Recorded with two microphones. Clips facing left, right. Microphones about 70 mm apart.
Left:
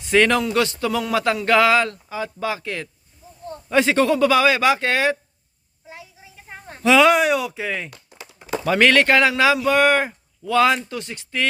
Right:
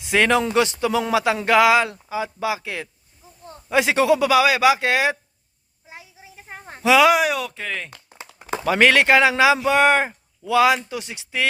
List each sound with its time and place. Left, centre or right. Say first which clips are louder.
0.0 s speech: left 1 dB; centre
6.8 s speech: left 1 dB; centre
7.9 s a sound: even; right
8.6 s speech: even; centre